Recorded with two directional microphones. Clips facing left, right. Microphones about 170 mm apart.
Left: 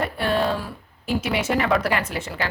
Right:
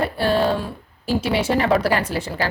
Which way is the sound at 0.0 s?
35° right (ahead or behind).